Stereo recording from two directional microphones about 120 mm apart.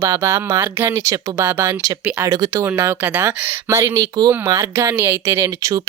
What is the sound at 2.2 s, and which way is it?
Speech, 30° right (ahead or behind).